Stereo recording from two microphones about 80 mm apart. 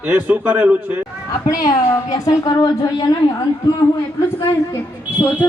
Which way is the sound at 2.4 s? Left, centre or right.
Left.